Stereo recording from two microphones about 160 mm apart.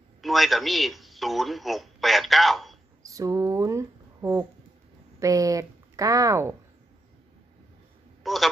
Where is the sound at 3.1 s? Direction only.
20° right (ahead or behind).